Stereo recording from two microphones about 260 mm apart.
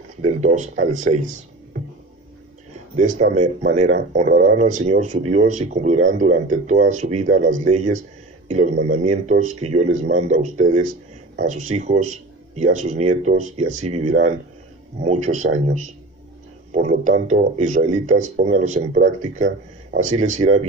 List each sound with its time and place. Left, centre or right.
0.2 s speech: right
3.0 s speech: right